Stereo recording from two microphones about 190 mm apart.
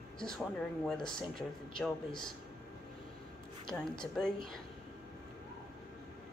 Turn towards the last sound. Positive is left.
turn(degrees=0)  # may be behind; listen again after turning